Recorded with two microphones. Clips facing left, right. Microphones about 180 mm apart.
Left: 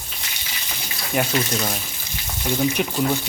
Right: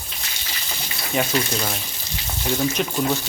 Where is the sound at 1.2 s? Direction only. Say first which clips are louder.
Even; 5° left (ahead or behind).